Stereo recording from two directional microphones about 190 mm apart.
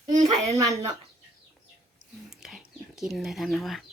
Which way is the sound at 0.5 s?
15° right (ahead or behind).